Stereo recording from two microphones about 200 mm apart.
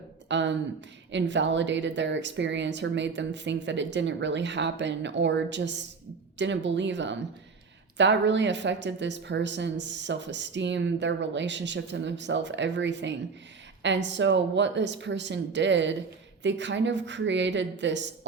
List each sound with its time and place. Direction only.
0.3 s speech: 65° right (ahead or behind)